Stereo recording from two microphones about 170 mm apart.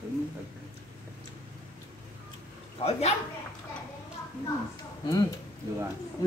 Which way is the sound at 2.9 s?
40° left (ahead or behind).